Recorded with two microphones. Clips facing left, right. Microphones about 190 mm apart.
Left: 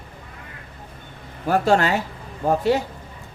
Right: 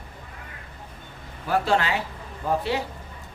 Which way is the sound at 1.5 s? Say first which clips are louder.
Left 5 dB; 45° left (ahead or behind).